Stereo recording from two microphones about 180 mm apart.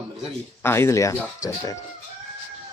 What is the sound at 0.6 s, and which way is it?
Speech, 15° left (ahead or behind).